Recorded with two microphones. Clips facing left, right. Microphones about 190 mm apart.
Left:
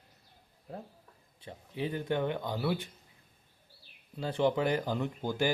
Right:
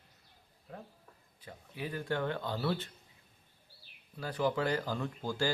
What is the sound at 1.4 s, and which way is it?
Speech, 25° left (ahead or behind).